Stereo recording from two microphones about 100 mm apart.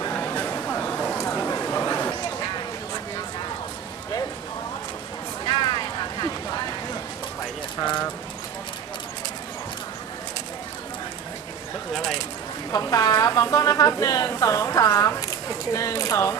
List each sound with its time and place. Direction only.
0.1 s a sound: 20° left (ahead or behind)
5.5 s boat: 50° left (ahead or behind)
12.7 s a woman's voice: 35° left (ahead or behind)